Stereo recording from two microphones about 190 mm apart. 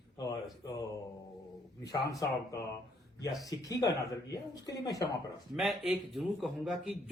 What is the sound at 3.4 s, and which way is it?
Speech, 20° left (ahead or behind).